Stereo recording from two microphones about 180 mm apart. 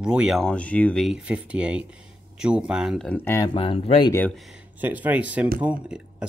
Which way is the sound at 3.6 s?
30° left (ahead or behind).